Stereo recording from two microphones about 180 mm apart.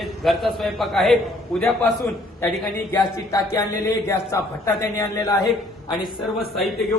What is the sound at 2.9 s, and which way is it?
A man's voice, 15° left (ahead or behind).